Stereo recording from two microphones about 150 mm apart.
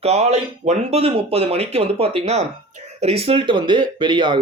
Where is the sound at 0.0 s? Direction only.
45° right (ahead or behind).